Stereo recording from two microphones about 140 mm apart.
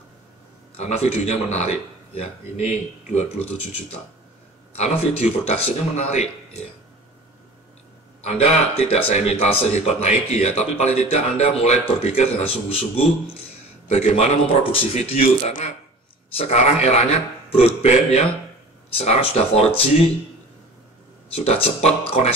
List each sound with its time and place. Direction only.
0.7 s speech: 50° left (ahead or behind)
4.7 s speech: 50° left (ahead or behind)
8.2 s speech: 50° left (ahead or behind)
21.5 s speech: 45° left (ahead or behind)